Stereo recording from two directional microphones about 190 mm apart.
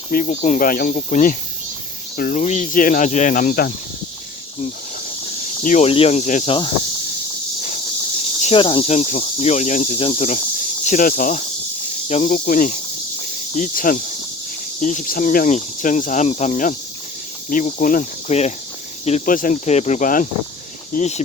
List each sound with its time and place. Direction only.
0.1 s speech: 40° left (ahead or behind)
5.6 s speech: 40° left (ahead or behind)
8.4 s speech: 30° left (ahead or behind)
12.0 s speech: 35° left (ahead or behind)
12.5 s speech: 45° left (ahead or behind)